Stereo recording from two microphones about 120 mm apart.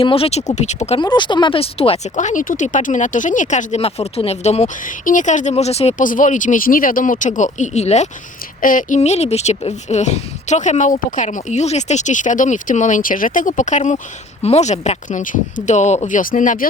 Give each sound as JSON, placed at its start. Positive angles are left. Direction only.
{"t": 0.0, "sound": "speech", "side_deg": 50}
{"t": 0.9, "sound": "speech", "side_deg": 40}
{"t": 2.1, "sound": "a woman's voice", "side_deg": 90}
{"t": 3.8, "sound": "speech", "side_deg": 60}
{"t": 5.1, "sound": "a woman's voice", "side_deg": 90}
{"t": 14.4, "sound": "a woman's voice", "side_deg": 70}